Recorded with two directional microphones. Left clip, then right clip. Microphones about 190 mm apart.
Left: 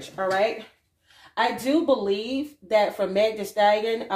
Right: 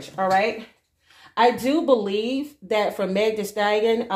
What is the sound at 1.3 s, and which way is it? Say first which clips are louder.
Speech: right 4 dB; 45° right (ahead or behind).